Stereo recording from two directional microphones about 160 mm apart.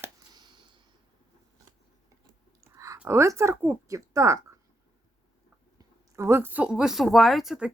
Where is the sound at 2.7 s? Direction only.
20° right (ahead or behind).